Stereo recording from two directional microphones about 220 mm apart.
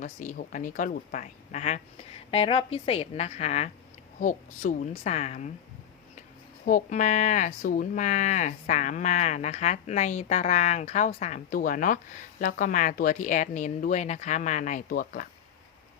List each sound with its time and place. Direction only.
0.0 s speech: 35° left (ahead or behind)
6.7 s speech: 35° left (ahead or behind)